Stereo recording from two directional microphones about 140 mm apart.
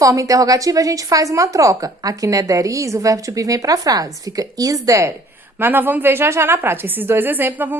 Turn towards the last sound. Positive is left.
turn(degrees=-15)  # may be behind; listen again after turning